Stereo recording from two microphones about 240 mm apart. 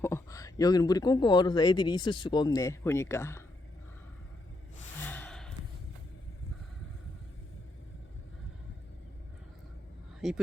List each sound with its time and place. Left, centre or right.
0.0 s speech: centre
4.9 s gasp: centre
10.2 s speech: centre